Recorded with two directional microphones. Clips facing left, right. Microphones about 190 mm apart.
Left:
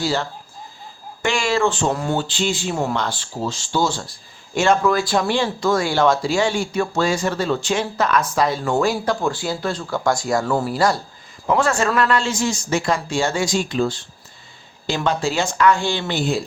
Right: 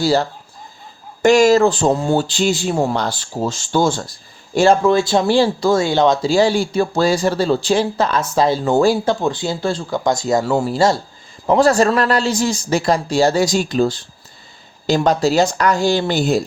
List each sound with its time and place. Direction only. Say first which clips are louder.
0.0 s speech: right 6 dB; 40° right (ahead or behind)
4.5 s speech: right 4 dB; 35° right (ahead or behind)
6.3 s speech: right 5 dB; 35° right (ahead or behind)
9.2 s speech: right 3 dB; 20° right (ahead or behind)
9.9 s speech: right 2 dB; 20° right (ahead or behind); by 16.4 s 40° right (ahead or behind)